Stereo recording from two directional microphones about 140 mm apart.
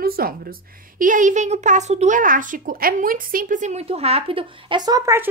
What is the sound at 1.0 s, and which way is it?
Speech, 70° right (ahead or behind).